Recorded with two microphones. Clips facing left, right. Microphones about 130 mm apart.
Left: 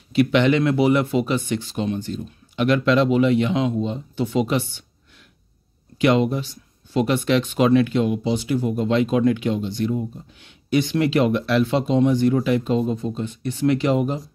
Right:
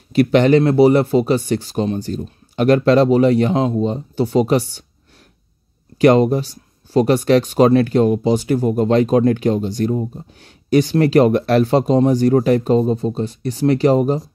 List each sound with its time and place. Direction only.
0.1 s speech: 40° right (ahead or behind)
5.9 s speech: 40° right (ahead or behind)